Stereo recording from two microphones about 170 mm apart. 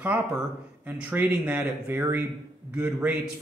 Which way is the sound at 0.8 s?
10° right (ahead or behind).